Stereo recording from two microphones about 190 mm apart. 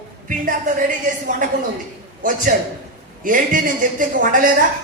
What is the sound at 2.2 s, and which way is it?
A woman's voice, 45° right (ahead or behind).